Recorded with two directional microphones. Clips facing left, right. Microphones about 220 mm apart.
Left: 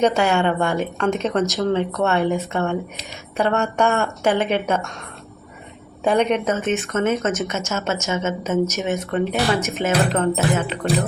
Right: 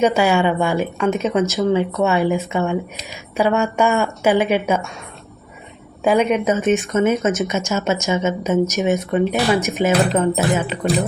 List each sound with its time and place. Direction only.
0.0 s speech: 10° right (ahead or behind)
6.0 s speech: 5° right (ahead or behind)